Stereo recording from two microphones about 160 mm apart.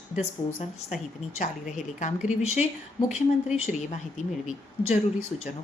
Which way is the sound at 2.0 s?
50° left (ahead or behind).